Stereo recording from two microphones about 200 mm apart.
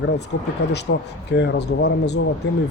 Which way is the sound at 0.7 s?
60° left (ahead or behind).